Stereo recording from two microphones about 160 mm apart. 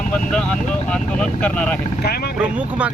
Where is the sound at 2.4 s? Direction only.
10° right (ahead or behind).